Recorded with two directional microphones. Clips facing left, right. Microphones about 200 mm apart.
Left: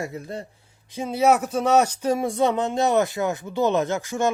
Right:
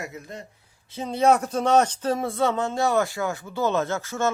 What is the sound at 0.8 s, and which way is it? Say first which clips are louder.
Speech: left 1 dB; 10° left (ahead or behind).